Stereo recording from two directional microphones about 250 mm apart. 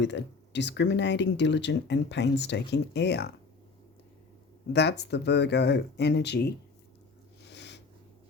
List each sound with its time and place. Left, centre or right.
0.0 s speech: left
4.7 s speech: left
7.5 s a sound: left